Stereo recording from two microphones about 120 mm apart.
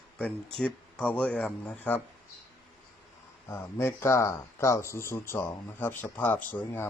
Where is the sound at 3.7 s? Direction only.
20° left (ahead or behind).